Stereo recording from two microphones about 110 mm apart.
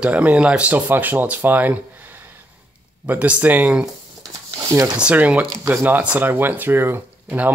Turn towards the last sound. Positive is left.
turn(degrees=-20)  # may be behind; listen again after turning